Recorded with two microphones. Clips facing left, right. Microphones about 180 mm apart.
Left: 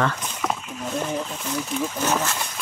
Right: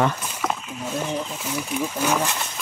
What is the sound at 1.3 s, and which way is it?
Speech, 5° right (ahead or behind).